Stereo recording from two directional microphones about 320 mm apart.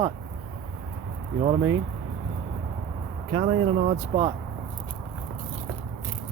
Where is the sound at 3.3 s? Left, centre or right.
Centre.